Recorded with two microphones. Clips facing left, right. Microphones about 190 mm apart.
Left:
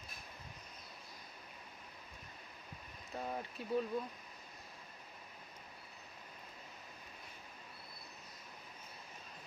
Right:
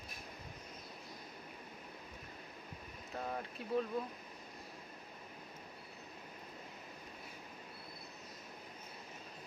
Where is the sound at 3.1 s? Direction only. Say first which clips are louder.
Even; 5° left (ahead or behind).